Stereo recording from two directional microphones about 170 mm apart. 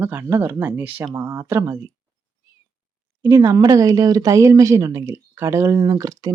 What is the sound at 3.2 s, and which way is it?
Speech, 15° right (ahead or behind).